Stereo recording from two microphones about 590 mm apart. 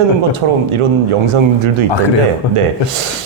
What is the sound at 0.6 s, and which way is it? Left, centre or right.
A man's voice, right.